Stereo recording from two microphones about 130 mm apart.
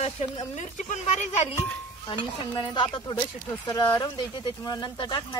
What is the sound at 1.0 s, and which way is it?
Stir, 55° left (ahead or behind).